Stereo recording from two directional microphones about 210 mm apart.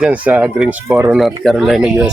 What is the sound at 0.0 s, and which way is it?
Speech, 5° right (ahead or behind).